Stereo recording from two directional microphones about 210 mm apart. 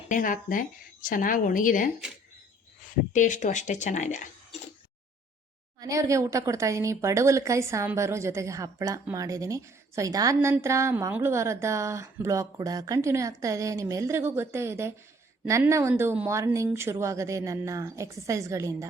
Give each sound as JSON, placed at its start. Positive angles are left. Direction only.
{"t": 0.1, "sound": "speech", "side_deg": 40}
{"t": 3.1, "sound": "speech", "side_deg": 35}
{"t": 5.8, "sound": "a woman's voice", "side_deg": -15}